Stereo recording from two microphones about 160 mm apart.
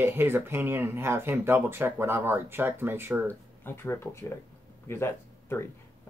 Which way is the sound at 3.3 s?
15° left (ahead or behind).